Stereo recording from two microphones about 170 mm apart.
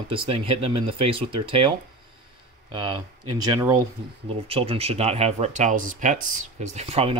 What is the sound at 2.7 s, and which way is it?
Speech, 25° right (ahead or behind).